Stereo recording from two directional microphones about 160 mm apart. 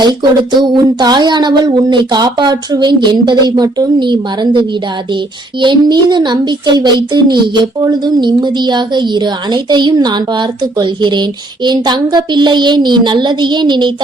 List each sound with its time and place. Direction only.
0.0 s a woman's voice: 25° right (ahead or behind)